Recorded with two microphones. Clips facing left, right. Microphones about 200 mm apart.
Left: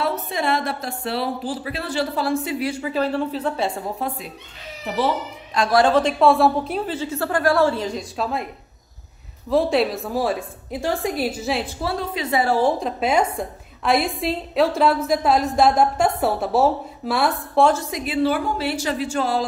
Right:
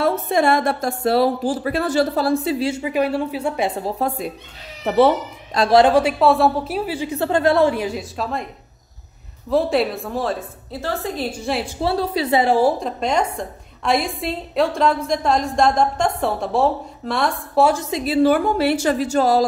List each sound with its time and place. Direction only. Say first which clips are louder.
0.0 s speech: right 6 dB; 50° right (ahead or behind); by 3.8 s 15° right (ahead or behind)
3.8 s speech: right 5 dB; 40° right (ahead or behind)
4.8 s speech: right 8 dB; 60° right (ahead or behind)
5.5 s speech: right 4 dB; 35° right (ahead or behind)
5.8 s a woman's voice: right 2 dB; 15° right (ahead or behind); by 8.5 s centre (ahead or behind)
9.5 s a woman's voice: even; centre (ahead or behind)
11.8 s speech: right 5 dB; 35° right (ahead or behind)
12.4 s a woman's voice: right 3 dB; 20° right (ahead or behind)
12.6 s a woman's voice: right 1 dB; centre (ahead or behind)
17.6 s a woman's voice: even; 15° right (ahead or behind)
17.9 s speech: right 5 dB; 40° right (ahead or behind)